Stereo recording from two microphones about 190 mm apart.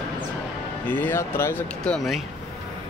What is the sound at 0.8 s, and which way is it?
Speech, 10° left (ahead or behind).